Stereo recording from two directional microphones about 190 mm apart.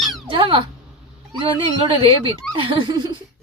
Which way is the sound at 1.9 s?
25° right (ahead or behind).